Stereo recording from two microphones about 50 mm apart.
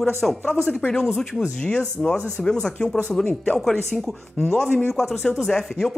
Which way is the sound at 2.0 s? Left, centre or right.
Centre.